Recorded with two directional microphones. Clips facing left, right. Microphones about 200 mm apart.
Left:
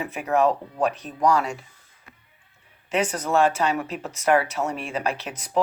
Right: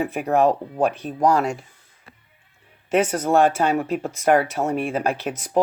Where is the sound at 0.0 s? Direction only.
55° right (ahead or behind).